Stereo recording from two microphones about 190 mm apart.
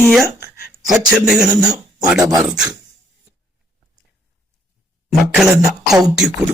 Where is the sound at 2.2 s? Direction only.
20° right (ahead or behind).